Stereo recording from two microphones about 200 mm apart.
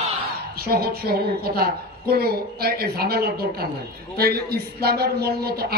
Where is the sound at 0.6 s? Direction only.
50° right (ahead or behind).